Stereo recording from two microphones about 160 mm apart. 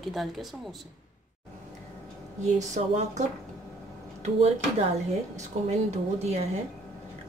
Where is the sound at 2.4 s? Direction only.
45° right (ahead or behind).